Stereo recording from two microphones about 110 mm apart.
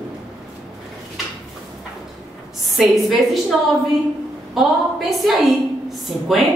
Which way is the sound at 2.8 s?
Centre (ahead or behind).